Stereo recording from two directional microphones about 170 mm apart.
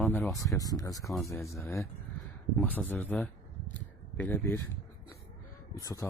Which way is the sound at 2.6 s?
10° left (ahead or behind).